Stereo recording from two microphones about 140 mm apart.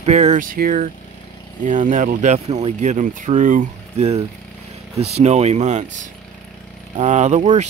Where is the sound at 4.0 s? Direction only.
50° right (ahead or behind).